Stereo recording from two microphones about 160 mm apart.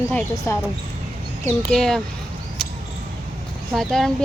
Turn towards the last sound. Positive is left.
turn(degrees=5)  # may be behind; listen again after turning